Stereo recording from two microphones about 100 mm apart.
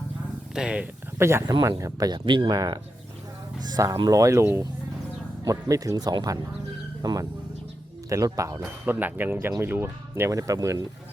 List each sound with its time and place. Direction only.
0.5 s speech: 10° right (ahead or behind)
1.2 s speech: 25° right (ahead or behind)
1.8 s speech: 40° right (ahead or behind)
2.1 s speech: 55° right (ahead or behind)
2.5 s speech: 40° right (ahead or behind)
8.9 s speech: 20° right (ahead or behind); by 10.8 s 35° right (ahead or behind)